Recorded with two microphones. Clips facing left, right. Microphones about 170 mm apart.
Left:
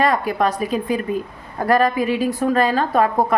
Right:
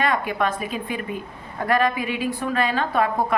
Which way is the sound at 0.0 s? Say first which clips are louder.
Left 4 dB; 40° left (ahead or behind).